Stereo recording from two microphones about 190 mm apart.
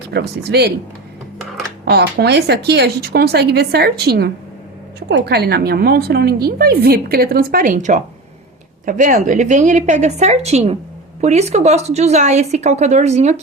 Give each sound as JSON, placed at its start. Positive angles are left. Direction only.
{"t": 0.1, "sound": "a woman's voice", "side_deg": -60}
{"t": 1.8, "sound": "a woman's voice", "side_deg": -55}